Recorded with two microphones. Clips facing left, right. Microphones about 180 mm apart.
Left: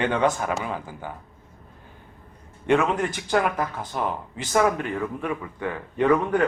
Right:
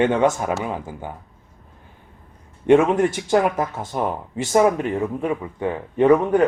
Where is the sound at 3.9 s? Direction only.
45° right (ahead or behind).